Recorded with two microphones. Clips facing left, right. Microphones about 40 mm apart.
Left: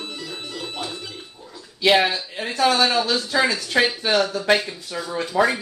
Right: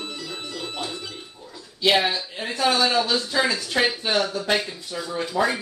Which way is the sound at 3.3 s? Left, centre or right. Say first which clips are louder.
Left 5 dB; left.